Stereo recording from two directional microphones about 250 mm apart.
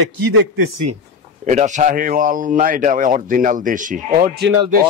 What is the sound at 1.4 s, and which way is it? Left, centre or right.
A man's voice, right.